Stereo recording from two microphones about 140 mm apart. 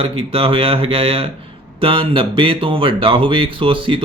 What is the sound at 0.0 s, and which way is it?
Speech, 40° right (ahead or behind).